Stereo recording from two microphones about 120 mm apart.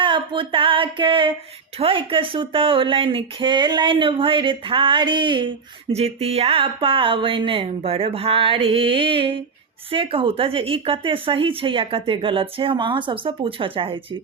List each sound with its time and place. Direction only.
0.0 s a woman's voice: 45° right (ahead or behind)
5.9 s a woman's voice: 60° right (ahead or behind)